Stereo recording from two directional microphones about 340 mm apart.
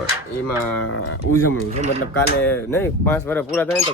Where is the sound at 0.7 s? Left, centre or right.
Left.